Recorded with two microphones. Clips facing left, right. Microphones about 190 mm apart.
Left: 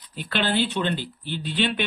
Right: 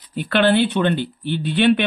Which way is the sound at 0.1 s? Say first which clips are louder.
Right 9 dB; 60° right (ahead or behind).